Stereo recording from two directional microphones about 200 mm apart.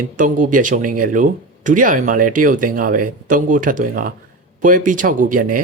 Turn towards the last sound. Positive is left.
turn(degrees=-45)  # may be behind; listen again after turning